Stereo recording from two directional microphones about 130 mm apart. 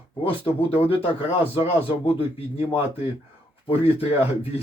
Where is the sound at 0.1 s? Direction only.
45° left (ahead or behind).